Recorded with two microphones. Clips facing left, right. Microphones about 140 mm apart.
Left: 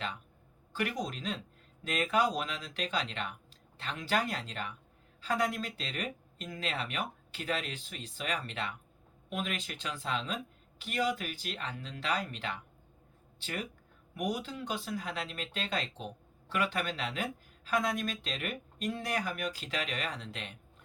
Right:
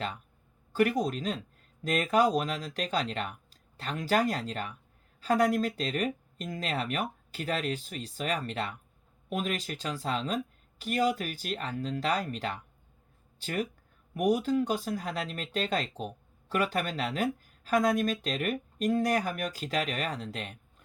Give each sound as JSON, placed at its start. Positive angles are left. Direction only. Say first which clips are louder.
{"t": 0.7, "sound": "speech", "louder": "right 8 dB", "side_deg": -40}